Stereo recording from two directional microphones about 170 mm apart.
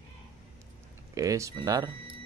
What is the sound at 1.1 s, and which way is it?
Speech, 20° right (ahead or behind).